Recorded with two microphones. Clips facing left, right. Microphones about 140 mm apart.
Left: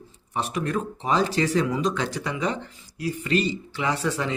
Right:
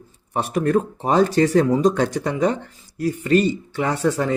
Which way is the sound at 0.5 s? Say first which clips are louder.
Right 10 dB; 50° right (ahead or behind).